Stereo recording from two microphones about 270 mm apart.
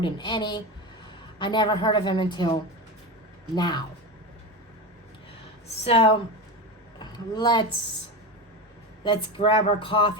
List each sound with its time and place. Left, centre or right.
0.0 s a woman's voice: centre
5.8 s speech: left
9.0 s speech: centre